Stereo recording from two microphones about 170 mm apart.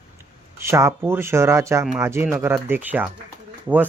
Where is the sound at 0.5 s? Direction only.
15° right (ahead or behind).